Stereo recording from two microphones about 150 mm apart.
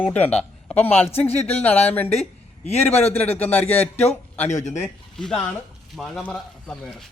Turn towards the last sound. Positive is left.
turn(degrees=5)  # may be behind; listen again after turning